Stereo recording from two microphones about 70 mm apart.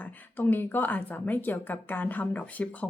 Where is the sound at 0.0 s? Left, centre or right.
Left.